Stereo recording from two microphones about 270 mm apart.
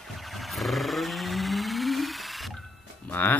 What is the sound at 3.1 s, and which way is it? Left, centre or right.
Music, centre.